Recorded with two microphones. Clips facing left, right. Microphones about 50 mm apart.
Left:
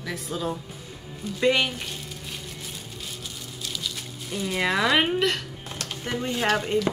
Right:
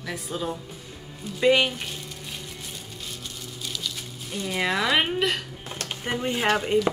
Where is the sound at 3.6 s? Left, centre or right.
Centre.